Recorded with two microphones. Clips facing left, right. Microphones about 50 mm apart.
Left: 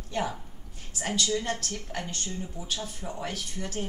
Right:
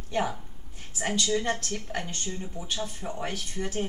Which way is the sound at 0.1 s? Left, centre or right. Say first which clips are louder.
Right 2 dB; centre.